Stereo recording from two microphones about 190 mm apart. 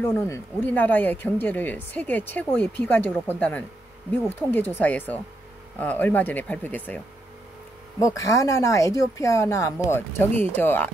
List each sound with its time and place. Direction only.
0.0 s speech: 10° left (ahead or behind)
8.0 s speech: 15° left (ahead or behind)